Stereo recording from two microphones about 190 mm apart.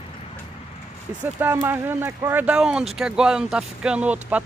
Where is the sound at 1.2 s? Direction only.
10° right (ahead or behind).